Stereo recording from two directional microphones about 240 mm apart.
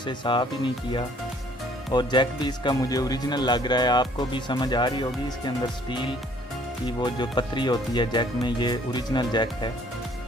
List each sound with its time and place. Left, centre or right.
0.0 s speech: centre
6.8 s speech: centre